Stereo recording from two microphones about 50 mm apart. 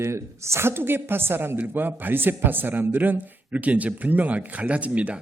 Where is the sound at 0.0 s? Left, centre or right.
Right.